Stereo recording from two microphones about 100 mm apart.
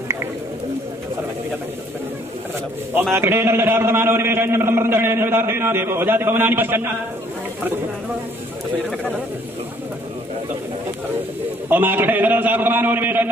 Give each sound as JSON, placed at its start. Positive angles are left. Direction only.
{"t": 3.2, "sound": "a man's voice", "side_deg": -25}
{"t": 11.7, "sound": "a man's voice", "side_deg": -20}